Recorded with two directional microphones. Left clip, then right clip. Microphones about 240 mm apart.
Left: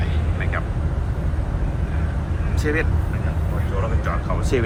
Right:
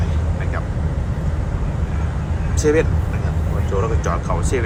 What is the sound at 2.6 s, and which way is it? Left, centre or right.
Speech, centre.